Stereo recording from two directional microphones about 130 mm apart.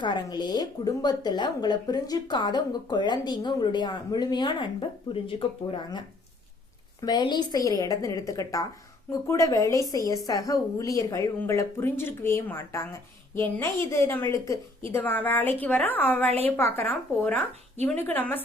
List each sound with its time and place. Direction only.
0.0 s speech: 35° left (ahead or behind)
5.6 s a woman's voice: 30° left (ahead or behind)
7.0 s a woman's voice: 35° left (ahead or behind); by 16.8 s 15° left (ahead or behind)
17.8 s a woman's voice: 15° left (ahead or behind)